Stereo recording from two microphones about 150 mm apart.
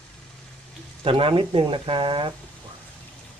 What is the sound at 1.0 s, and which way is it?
Speech, 35° right (ahead or behind).